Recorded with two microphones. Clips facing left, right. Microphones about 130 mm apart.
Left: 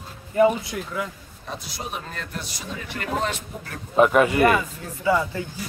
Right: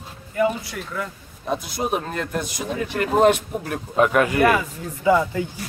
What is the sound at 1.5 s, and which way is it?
A man's voice, 50° right (ahead or behind).